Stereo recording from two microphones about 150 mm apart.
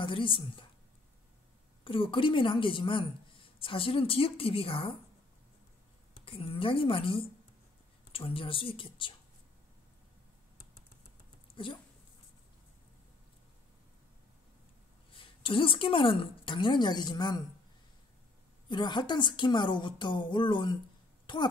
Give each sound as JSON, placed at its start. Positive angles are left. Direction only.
{"t": 0.0, "sound": "a woman's voice", "side_deg": 35}
{"t": 1.9, "sound": "a woman's voice", "side_deg": 35}
{"t": 6.2, "sound": "a woman's voice", "side_deg": 40}
{"t": 11.5, "sound": "speech", "side_deg": 35}
{"t": 15.1, "sound": "a woman's voice", "side_deg": 35}
{"t": 18.7, "sound": "a woman's voice", "side_deg": 30}